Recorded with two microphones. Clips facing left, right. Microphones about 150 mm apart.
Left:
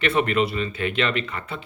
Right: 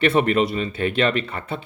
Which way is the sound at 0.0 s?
40° right (ahead or behind).